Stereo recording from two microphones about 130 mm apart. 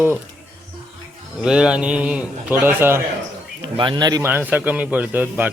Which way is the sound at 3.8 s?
35° right (ahead or behind).